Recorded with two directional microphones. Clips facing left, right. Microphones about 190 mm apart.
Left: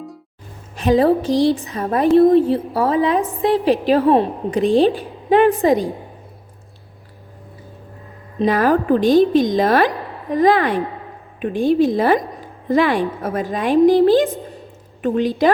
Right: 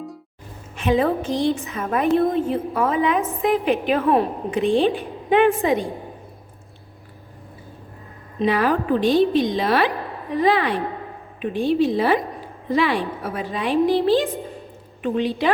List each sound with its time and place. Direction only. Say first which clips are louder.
0.8 s a woman's voice: left 5 dB; 35° left (ahead or behind)
8.4 s a woman's voice: left 4 dB; 45° left (ahead or behind)